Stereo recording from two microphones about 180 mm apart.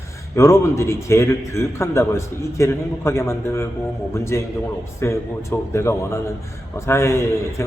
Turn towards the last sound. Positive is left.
turn(degrees=15)  # may be behind; listen again after turning